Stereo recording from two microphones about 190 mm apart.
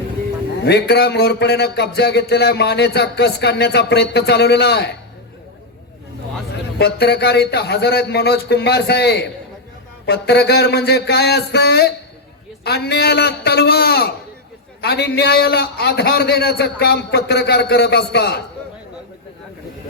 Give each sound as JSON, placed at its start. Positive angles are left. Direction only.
{"t": 0.6, "sound": "a man's voice", "side_deg": 60}
{"t": 6.7, "sound": "a man's voice", "side_deg": 55}